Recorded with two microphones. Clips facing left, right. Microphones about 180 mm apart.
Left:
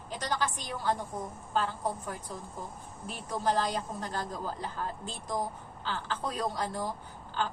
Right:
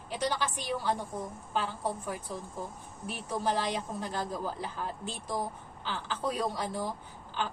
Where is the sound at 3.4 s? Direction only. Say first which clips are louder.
Left 2 dB; 10° right (ahead or behind).